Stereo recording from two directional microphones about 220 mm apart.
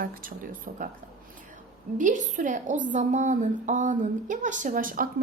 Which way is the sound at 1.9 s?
35° right (ahead or behind).